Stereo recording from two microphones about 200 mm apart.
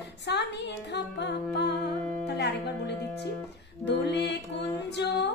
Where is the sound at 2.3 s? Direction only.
55° left (ahead or behind).